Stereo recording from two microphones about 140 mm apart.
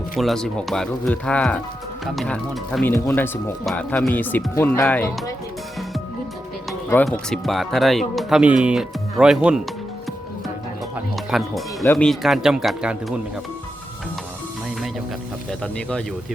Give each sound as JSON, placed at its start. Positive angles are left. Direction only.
{"t": 0.2, "sound": "speech", "side_deg": 0}
{"t": 2.9, "sound": "speech", "side_deg": 20}
{"t": 3.7, "sound": "speech", "side_deg": 5}
{"t": 6.9, "sound": "speech", "side_deg": 5}
{"t": 10.9, "sound": "music", "side_deg": 0}
{"t": 11.9, "sound": "speech", "side_deg": 0}
{"t": 15.6, "sound": "speech", "side_deg": 5}